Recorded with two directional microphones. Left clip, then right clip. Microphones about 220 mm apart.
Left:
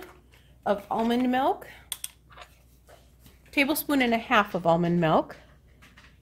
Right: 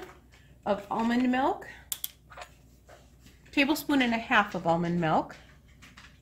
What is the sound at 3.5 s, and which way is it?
Speech, 40° left (ahead or behind).